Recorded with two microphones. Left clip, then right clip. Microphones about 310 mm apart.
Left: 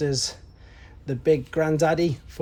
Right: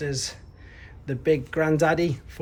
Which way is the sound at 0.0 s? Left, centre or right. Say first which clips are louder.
Left 4 dB; centre.